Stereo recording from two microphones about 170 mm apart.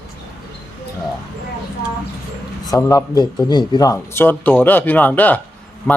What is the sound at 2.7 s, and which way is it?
Speech, 20° left (ahead or behind).